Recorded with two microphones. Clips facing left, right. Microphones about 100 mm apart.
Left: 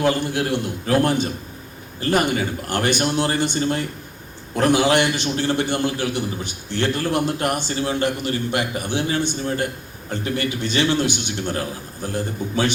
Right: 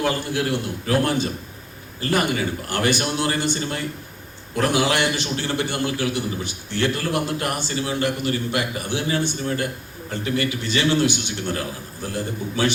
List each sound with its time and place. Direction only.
0.0 s a man's voice: 20° left (ahead or behind)